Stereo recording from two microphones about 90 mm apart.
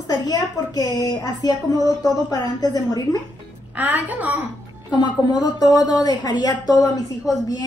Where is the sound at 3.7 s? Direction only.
20° right (ahead or behind).